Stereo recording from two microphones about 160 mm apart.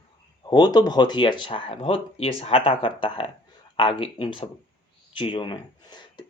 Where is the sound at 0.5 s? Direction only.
25° left (ahead or behind).